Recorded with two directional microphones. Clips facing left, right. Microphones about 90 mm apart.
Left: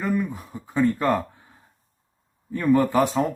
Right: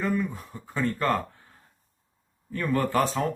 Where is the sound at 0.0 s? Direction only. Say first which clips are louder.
Left 2 dB; 10° left (ahead or behind).